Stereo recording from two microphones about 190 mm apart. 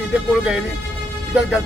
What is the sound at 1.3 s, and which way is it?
Speech, 5° right (ahead or behind).